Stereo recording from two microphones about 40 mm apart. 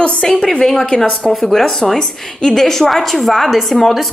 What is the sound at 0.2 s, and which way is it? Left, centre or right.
A woman's voice, centre.